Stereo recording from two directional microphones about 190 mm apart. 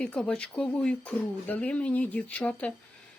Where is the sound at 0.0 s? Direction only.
5° left (ahead or behind).